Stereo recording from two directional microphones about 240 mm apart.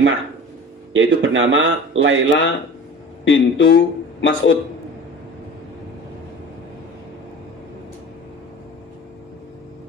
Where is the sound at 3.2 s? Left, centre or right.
Left.